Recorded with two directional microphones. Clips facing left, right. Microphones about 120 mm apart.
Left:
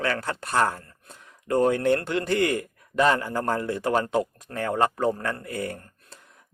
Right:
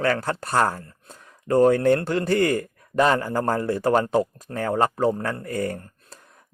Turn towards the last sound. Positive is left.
turn(degrees=-40)  # may be behind; listen again after turning